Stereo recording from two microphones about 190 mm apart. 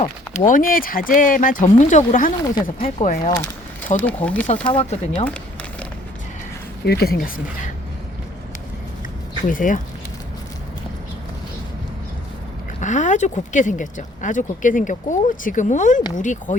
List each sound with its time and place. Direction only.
0.0 s speech: 40° left (ahead or behind)
3.9 s speech: 10° left (ahead or behind)
4.6 s speech: 30° left (ahead or behind)
6.8 s speech: 55° left (ahead or behind)
9.5 s speech: 45° left (ahead or behind)
12.8 s speech: 40° left (ahead or behind)